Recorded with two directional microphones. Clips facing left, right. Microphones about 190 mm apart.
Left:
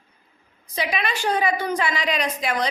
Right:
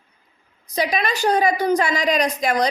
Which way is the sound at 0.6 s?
40° right (ahead or behind).